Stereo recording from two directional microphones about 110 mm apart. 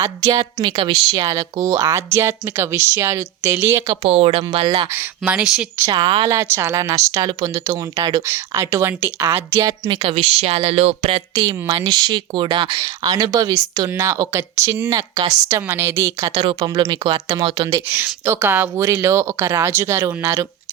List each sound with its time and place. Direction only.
0.0 s speech: 35° right (ahead or behind)
4.0 s speech: 65° right (ahead or behind)
4.9 s speech: 10° right (ahead or behind)
5.9 s speech: 50° right (ahead or behind)
6.3 s speech: 25° right (ahead or behind)
9.9 s speech: 55° right (ahead or behind); by 11.2 s 70° right (ahead or behind)
11.3 s speech: 35° right (ahead or behind)
16.4 s speech: 50° right (ahead or behind)
16.6 s speech: 35° right (ahead or behind)
17.7 s speech: 20° right (ahead or behind)